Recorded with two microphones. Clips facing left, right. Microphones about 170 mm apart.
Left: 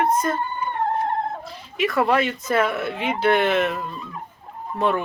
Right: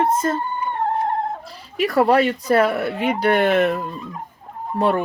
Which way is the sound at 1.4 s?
35° right (ahead or behind).